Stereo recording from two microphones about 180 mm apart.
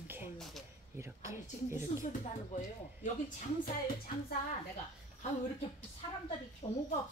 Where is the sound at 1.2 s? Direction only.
15° right (ahead or behind).